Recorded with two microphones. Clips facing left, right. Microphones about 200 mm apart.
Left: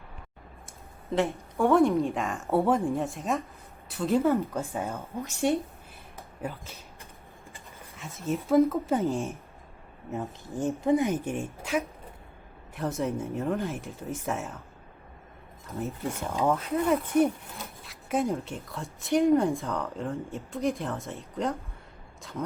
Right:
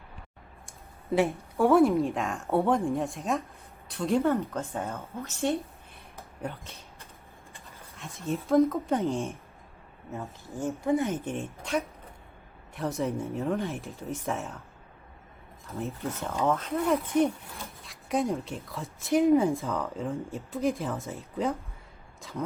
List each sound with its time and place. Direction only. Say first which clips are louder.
1.1 s a woman's voice: right 2 dB; 10° right (ahead or behind); by 5.5 s 15° left (ahead or behind)
6.4 s speech: left 1 dB; centre (ahead or behind)
7.9 s speech: left 1 dB; centre (ahead or behind)
10.1 s a woman's voice: left 4 dB; 20° left (ahead or behind); by 14.6 s centre (ahead or behind)
15.9 s a woman's voice: left 1 dB; 10° left (ahead or behind)